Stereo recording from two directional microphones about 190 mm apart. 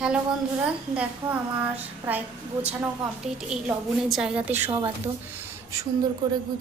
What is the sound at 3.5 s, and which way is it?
Speech, 5° right (ahead or behind).